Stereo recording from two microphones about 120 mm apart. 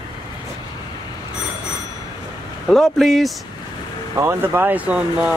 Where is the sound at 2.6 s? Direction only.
Centre (ahead or behind).